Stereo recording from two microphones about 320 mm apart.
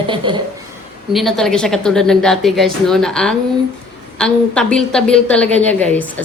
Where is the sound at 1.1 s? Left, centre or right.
Centre.